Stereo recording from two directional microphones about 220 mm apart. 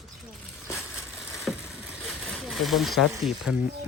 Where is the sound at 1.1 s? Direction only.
Centre (ahead or behind).